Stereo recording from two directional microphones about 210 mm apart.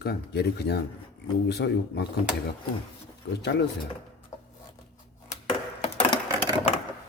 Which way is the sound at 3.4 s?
55° left (ahead or behind).